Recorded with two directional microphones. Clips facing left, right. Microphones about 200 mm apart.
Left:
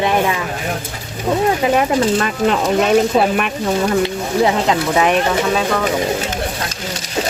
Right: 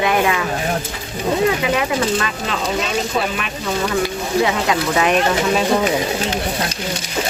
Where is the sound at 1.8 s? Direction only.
45° left (ahead or behind).